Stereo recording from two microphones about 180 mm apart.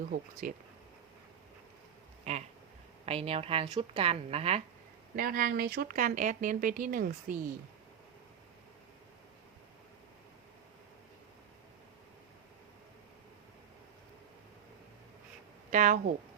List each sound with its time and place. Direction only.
0.4 s speech: 50° right (ahead or behind)
2.3 s a woman's voice: 40° right (ahead or behind)
5.1 s speech: 50° right (ahead or behind)
15.7 s speech: 45° right (ahead or behind)